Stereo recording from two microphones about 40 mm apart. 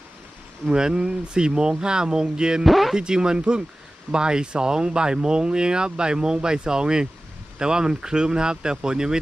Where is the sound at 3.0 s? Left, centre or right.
Centre.